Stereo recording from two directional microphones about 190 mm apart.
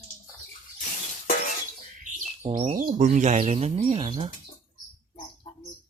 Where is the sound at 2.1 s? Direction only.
35° right (ahead or behind).